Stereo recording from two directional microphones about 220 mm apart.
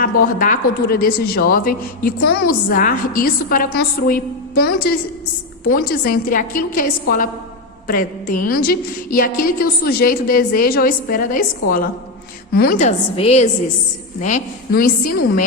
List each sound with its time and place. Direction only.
0.0 s a woman's voice: 35° left (ahead or behind)
12.5 s a woman's voice: 40° left (ahead or behind)
13.1 s a woman's voice: 30° left (ahead or behind)